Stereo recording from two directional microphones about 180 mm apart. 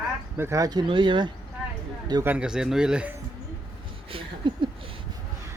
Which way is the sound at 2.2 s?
5° right (ahead or behind).